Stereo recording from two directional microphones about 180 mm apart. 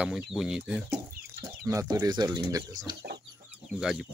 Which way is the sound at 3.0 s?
70° right (ahead or behind).